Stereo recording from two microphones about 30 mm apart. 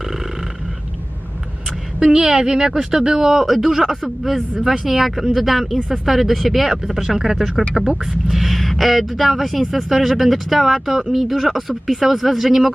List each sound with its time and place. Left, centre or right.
0.0 s burping: centre
2.0 s speech: right
3.2 s speech: centre